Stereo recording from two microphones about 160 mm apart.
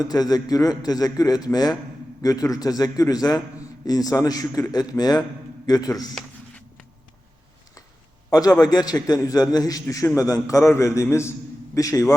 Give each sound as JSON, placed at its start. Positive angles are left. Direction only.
{"t": 0.0, "sound": "a man's voice", "side_deg": 25}
{"t": 8.3, "sound": "a man's voice", "side_deg": 25}